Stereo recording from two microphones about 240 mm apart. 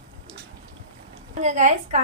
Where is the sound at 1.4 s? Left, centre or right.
Right.